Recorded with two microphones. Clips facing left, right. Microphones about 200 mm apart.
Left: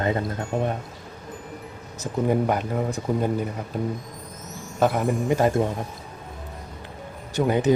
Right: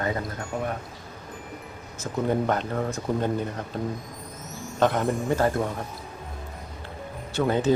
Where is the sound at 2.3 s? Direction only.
10° left (ahead or behind).